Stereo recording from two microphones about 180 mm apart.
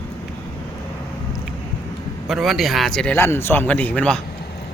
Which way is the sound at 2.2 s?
Centre (ahead or behind).